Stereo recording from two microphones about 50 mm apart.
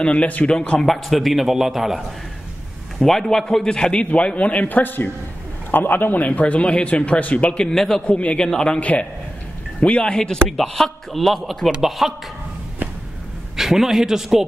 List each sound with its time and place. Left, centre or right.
0.0 s a man's voice: left
0.5 s a man's voice: centre
0.8 s a man's voice: centre
3.0 s a man's voice: centre; by 7.6 s left
7.6 s a man's voice: centre
8.1 s a man's voice: left
8.5 s a man's voice: centre
8.7 s a man's voice: left; by 12.1 s centre
13.6 s a man's voice: centre